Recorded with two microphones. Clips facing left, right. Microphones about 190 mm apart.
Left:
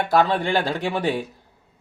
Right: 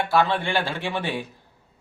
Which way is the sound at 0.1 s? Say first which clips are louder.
Left 4 dB; 40° left (ahead or behind).